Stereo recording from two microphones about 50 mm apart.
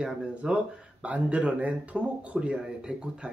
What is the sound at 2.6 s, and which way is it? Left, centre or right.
Speech, centre.